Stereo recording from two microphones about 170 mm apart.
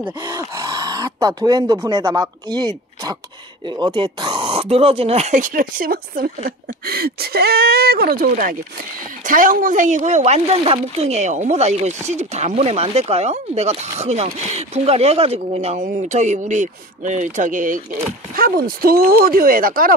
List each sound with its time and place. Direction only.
0.2 s speech: 25° right (ahead or behind); by 20.0 s 55° right (ahead or behind)